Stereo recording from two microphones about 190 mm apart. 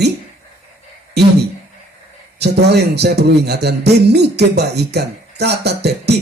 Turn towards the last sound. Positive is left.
turn(degrees=-60)  # may be behind; listen again after turning